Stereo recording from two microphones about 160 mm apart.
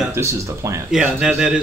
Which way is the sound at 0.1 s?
15° right (ahead or behind).